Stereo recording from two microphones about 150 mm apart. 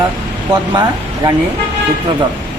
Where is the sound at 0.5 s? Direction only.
30° right (ahead or behind).